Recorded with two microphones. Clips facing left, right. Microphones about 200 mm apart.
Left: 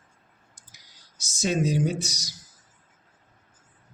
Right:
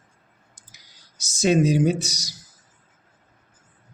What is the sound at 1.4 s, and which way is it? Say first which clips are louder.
Speech: right 6 dB; 75° right (ahead or behind).